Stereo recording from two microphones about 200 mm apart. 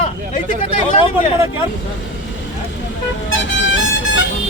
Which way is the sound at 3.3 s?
70° left (ahead or behind).